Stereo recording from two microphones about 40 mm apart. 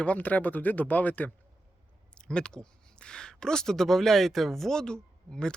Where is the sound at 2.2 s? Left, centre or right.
Left.